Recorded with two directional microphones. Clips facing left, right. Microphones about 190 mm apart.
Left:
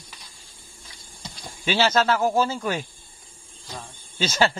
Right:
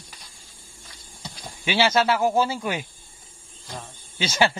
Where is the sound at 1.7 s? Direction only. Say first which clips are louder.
Even; 10° right (ahead or behind).